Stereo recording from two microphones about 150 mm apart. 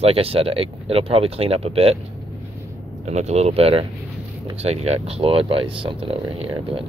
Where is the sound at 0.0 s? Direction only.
40° right (ahead or behind).